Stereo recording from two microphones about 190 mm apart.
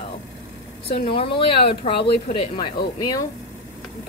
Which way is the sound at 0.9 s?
30° left (ahead or behind).